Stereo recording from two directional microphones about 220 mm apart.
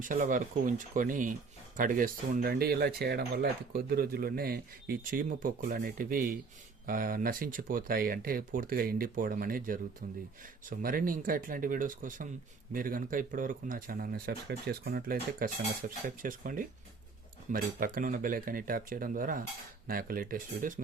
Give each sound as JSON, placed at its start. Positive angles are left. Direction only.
{"t": 0.0, "sound": "speech", "side_deg": -35}